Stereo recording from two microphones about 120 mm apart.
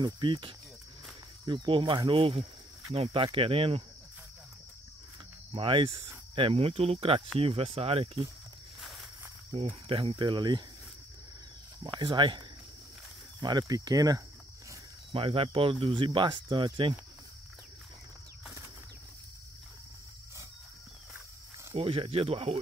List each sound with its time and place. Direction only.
0.0 s speech: 40° right (ahead or behind)
5.5 s speech: 45° right (ahead or behind)
9.5 s speech: 50° right (ahead or behind)
11.8 s speech: 40° right (ahead or behind)
15.1 s speech: 50° right (ahead or behind)
21.7 s speech: 50° right (ahead or behind)